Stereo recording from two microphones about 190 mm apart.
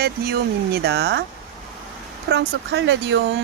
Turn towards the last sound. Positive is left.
turn(degrees=-70)  # may be behind; listen again after turning